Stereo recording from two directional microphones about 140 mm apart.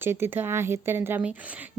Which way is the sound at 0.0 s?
15° right (ahead or behind).